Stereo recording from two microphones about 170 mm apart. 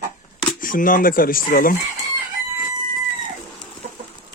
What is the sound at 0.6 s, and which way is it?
Speech, 55° left (ahead or behind).